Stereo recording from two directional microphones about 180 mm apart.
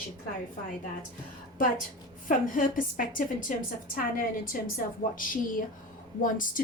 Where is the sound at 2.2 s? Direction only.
50° left (ahead or behind).